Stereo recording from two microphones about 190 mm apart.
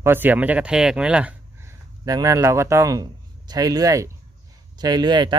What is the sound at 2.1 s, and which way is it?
A man's voice, 20° right (ahead or behind).